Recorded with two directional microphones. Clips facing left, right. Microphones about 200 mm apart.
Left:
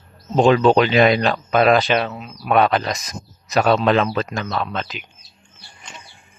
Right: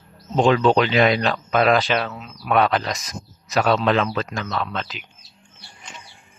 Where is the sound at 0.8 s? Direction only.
20° left (ahead or behind).